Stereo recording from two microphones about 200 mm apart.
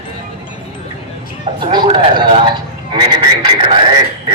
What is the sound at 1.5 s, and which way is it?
A man's voice, 20° right (ahead or behind).